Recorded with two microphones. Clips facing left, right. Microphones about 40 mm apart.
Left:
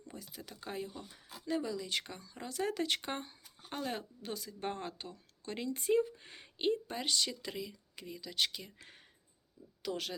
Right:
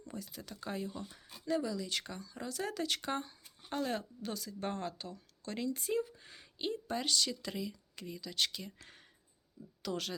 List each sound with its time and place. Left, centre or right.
0.1 s speech: centre; by 6.7 s left
6.8 s speech: centre